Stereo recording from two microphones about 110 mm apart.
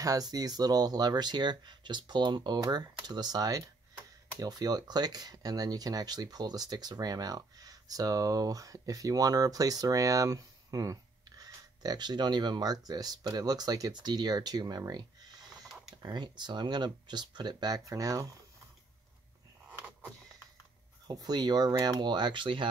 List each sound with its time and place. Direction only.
0.0 s speech: 35° right (ahead or behind)
15.5 s a sound: centre (ahead or behind)
16.0 s speech: 40° right (ahead or behind)
21.1 s speech: 40° right (ahead or behind)